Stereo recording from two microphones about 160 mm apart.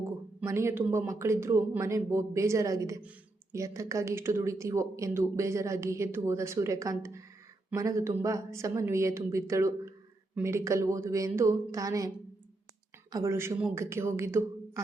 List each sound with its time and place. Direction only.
0.4 s speech: 15° right (ahead or behind)